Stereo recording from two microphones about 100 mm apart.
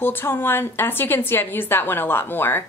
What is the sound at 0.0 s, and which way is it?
A woman's voice, 20° left (ahead or behind).